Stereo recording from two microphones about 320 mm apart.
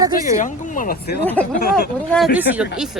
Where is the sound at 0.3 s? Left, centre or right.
Left.